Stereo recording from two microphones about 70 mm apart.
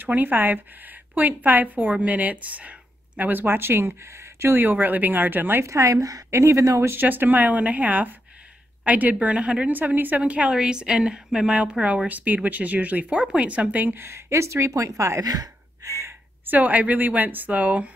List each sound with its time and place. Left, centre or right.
0.0 s speech: right
5.7 s a woman's voice: right
6.9 s a woman's voice: right
15.2 s gasp: right
16.4 s speech: right